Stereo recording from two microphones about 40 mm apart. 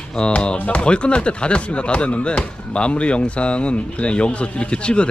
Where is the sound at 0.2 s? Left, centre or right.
Left.